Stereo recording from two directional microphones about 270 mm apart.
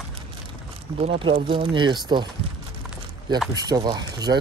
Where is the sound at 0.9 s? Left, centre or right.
Right.